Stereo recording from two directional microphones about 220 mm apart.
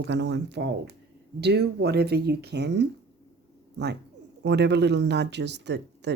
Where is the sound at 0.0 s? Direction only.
50° right (ahead or behind).